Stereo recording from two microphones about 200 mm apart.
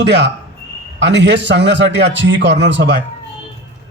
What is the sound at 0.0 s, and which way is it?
A man's voice, 60° right (ahead or behind).